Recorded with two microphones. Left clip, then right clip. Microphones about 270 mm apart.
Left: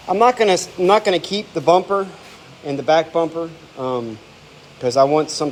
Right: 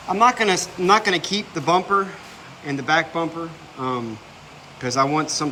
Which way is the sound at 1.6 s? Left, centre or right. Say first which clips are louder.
Left 4 dB; right.